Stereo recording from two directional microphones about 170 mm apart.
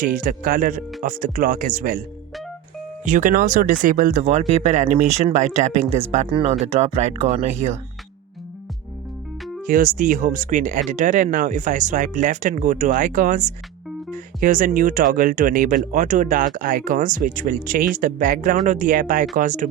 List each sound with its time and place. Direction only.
0.0 s speech: 50° right (ahead or behind)
9.6 s speech: 50° right (ahead or behind)